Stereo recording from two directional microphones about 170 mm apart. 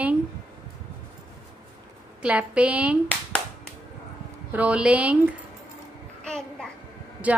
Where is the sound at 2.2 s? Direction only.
5° right (ahead or behind).